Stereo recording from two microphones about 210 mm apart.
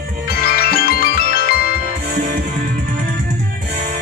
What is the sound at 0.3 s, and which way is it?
Music, 45° left (ahead or behind).